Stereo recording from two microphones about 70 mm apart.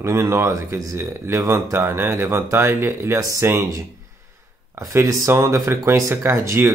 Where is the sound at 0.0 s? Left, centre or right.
Right.